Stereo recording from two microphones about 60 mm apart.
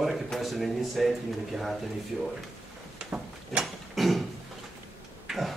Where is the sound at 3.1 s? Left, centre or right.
Centre.